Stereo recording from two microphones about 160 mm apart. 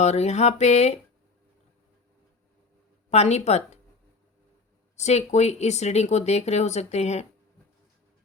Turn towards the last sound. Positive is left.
turn(degrees=45)  # may be behind; listen again after turning